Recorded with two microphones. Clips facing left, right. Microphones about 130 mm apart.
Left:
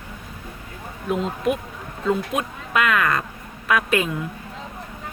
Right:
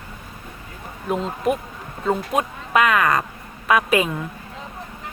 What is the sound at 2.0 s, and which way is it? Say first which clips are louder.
Speech: right 1 dB; 45° right (ahead or behind).